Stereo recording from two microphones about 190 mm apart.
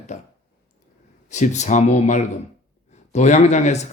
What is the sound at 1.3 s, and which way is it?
Speech, 40° left (ahead or behind).